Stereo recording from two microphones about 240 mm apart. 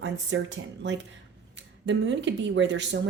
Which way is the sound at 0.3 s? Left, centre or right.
Right.